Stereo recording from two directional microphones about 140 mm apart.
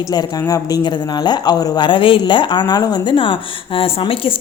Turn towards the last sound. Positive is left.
turn(degrees=40)  # may be behind; listen again after turning